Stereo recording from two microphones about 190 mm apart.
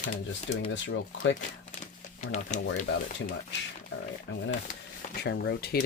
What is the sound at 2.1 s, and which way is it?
Speech, 35° left (ahead or behind).